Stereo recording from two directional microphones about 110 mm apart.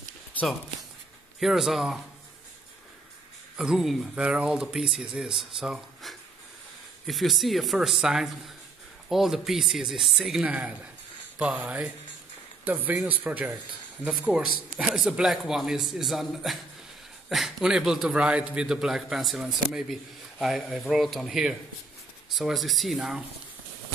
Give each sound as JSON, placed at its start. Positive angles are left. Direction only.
{"t": 1.4, "sound": "a man's voice", "side_deg": 0}
{"t": 3.5, "sound": "a man's voice", "side_deg": -5}